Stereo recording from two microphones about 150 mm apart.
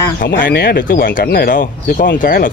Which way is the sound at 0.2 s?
80° left.